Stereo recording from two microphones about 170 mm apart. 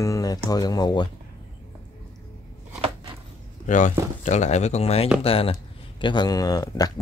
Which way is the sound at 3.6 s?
45° left (ahead or behind).